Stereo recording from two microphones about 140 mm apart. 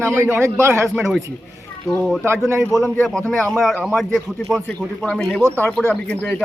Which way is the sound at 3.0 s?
5° left (ahead or behind).